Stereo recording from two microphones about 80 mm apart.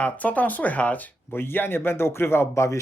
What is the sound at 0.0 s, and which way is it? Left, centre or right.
Speech, centre.